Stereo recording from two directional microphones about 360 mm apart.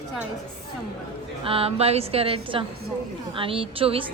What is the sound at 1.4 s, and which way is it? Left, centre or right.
A woman's voice, centre.